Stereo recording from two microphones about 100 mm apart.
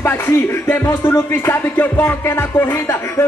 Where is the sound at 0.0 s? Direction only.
25° left (ahead or behind).